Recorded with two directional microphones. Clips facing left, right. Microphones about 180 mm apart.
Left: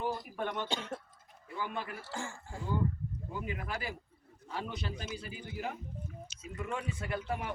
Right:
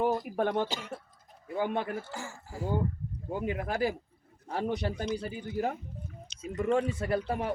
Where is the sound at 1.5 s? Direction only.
55° right (ahead or behind).